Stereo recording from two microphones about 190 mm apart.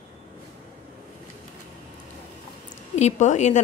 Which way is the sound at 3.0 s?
35° left (ahead or behind).